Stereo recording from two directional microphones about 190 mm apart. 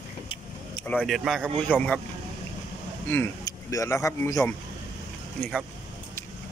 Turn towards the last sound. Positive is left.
turn(degrees=0)  # may be behind; listen again after turning